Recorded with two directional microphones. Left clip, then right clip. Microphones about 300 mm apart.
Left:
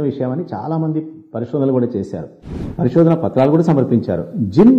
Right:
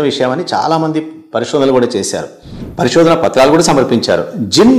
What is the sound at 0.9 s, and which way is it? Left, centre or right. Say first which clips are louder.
A man's voice: right 6 dB; centre.